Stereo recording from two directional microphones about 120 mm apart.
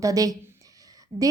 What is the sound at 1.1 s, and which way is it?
Speech, 60° right (ahead or behind).